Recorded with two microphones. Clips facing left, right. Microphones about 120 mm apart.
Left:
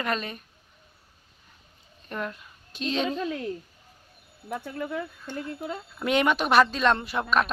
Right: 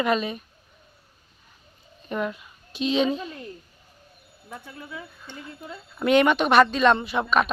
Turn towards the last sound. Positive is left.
turn(degrees=0)  # may be behind; listen again after turning